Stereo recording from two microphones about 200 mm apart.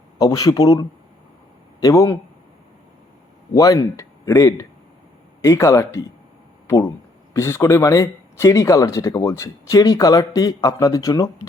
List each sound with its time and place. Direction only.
0.2 s speech: 20° left (ahead or behind)
3.5 s speech: 15° left (ahead or behind)